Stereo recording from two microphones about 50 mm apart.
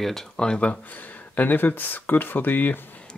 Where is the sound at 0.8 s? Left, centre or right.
Left.